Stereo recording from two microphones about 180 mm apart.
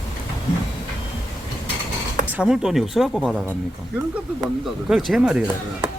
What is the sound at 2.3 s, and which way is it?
Speech, 5° right (ahead or behind).